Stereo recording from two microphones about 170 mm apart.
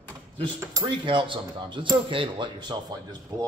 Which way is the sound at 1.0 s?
30° right (ahead or behind).